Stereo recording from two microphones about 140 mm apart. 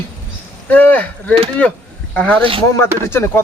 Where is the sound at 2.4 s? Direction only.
40° right (ahead or behind).